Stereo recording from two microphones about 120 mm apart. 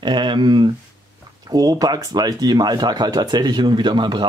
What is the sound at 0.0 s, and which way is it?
Speech, 40° right (ahead or behind).